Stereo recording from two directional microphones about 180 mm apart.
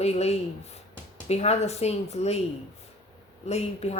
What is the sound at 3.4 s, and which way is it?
Speech, 35° left (ahead or behind).